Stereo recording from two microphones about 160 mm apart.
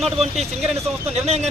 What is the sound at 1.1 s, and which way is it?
Speech, 40° right (ahead or behind).